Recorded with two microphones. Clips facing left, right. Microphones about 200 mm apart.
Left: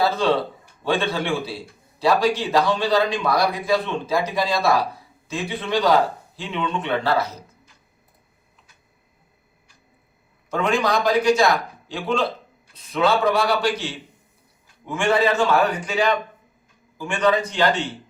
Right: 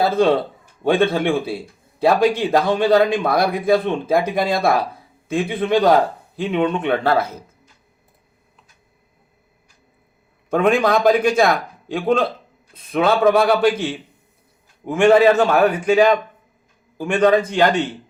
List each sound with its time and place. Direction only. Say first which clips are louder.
0.0 s a man's voice: right 4 dB; 50° right (ahead or behind)
10.5 s a man's voice: right 5 dB; 55° right (ahead or behind)